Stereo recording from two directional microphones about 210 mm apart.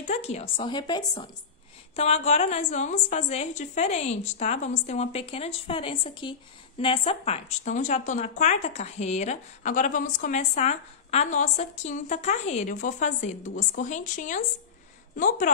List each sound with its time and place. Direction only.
0.0 s speech: 30° left (ahead or behind)
2.0 s speech: 30° left (ahead or behind)